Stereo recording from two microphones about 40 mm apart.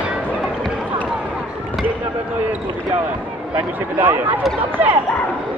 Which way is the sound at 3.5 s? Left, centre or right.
Right.